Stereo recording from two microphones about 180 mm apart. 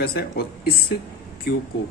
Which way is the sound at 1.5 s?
60° left (ahead or behind).